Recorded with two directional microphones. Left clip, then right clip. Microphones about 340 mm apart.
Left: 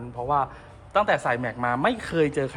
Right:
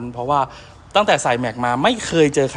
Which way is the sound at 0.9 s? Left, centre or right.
Centre.